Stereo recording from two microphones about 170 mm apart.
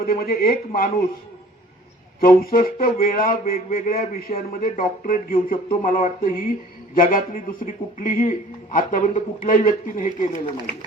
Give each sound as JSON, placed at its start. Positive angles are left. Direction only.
{"t": 0.0, "sound": "speech", "side_deg": 60}
{"t": 2.2, "sound": "speech", "side_deg": 60}
{"t": 3.5, "sound": "a man's voice", "side_deg": 40}
{"t": 4.0, "sound": "a man's voice", "side_deg": 60}